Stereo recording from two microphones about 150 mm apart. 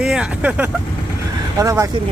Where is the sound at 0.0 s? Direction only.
5° right (ahead or behind).